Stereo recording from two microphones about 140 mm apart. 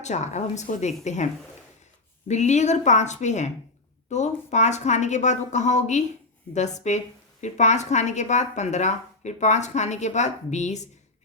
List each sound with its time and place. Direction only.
0.0 s speech: 55° left (ahead or behind)